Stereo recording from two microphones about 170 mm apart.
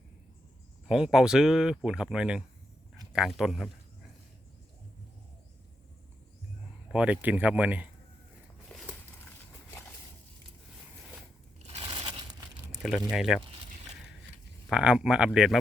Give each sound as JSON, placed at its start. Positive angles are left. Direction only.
{"t": 0.9, "sound": "speech", "side_deg": -5}
{"t": 6.9, "sound": "speech", "side_deg": -5}
{"t": 8.7, "sound": "a sound", "side_deg": 5}
{"t": 11.6, "sound": "crushing", "side_deg": -35}
{"t": 12.7, "sound": "speech", "side_deg": 0}
{"t": 14.7, "sound": "speech", "side_deg": -5}